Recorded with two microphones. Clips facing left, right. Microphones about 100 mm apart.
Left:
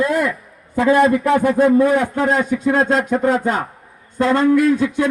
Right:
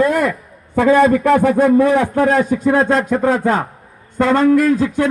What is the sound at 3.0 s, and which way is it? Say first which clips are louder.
Speech: right 1 dB; 50° right (ahead or behind).